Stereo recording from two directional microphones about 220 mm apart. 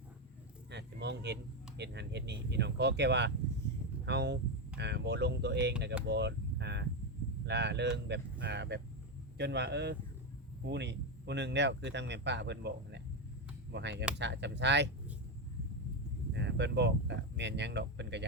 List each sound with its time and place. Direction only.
0.7 s a sound: 50° right (ahead or behind)
1.8 s speech: 50° right (ahead or behind)
16.3 s speech: 55° right (ahead or behind)